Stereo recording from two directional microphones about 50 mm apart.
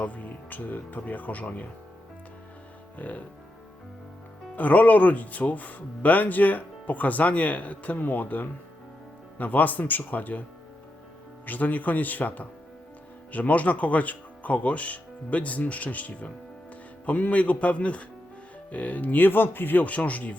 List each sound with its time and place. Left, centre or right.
0.0 s speech: left
3.0 s speech: left
4.5 s speech: left
11.4 s a man's voice: left